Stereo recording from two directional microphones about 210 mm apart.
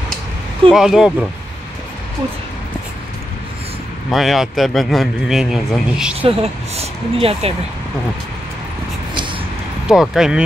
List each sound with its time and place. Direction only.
0.7 s a man's voice: centre (ahead or behind)
4.1 s a man's voice: centre (ahead or behind)
6.2 s speech: 25° right (ahead or behind)
9.8 s a man's voice: centre (ahead or behind)